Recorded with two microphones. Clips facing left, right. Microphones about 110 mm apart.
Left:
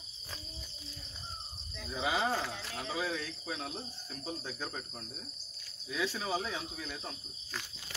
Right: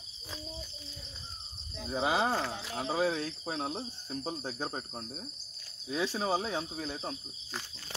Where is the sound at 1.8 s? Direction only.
35° right (ahead or behind).